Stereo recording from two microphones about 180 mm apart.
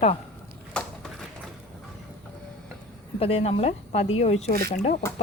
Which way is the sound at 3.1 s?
35° left (ahead or behind).